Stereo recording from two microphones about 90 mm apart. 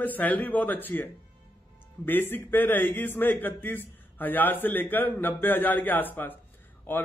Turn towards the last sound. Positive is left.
turn(degrees=20)  # may be behind; listen again after turning